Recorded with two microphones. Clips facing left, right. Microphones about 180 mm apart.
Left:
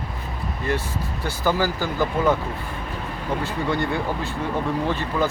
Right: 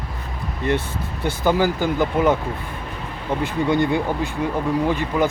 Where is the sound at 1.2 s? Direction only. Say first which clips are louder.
Right 4 dB; 20° right (ahead or behind).